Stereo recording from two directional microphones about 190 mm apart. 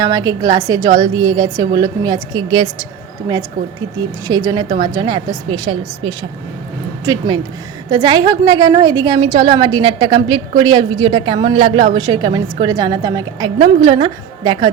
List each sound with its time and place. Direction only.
0.0 s a woman's voice: 20° right (ahead or behind)
4.3 s a woman's voice: 20° right (ahead or behind)